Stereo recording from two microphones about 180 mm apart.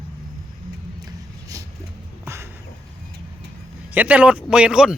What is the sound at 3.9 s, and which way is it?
Speech, 10° right (ahead or behind).